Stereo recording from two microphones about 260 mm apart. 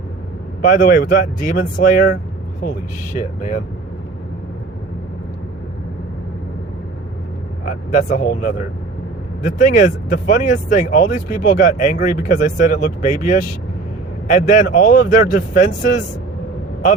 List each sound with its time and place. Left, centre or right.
0.6 s speech: left
3.2 s speech: left
7.6 s speech: left